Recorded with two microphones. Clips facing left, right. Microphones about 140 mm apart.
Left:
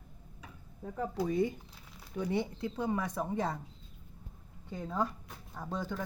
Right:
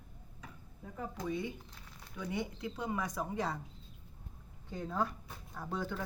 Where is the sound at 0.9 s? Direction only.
40° left (ahead or behind); by 3.6 s 25° left (ahead or behind).